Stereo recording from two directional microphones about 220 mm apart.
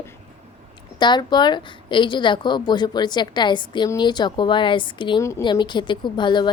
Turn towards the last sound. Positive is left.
turn(degrees=20)  # may be behind; listen again after turning